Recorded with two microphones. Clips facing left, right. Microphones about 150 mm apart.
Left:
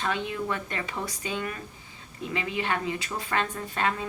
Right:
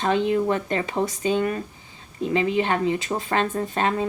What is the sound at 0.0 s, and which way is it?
Speech, 30° right (ahead or behind).